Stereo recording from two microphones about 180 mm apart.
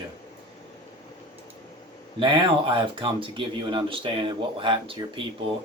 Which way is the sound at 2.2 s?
25° right (ahead or behind).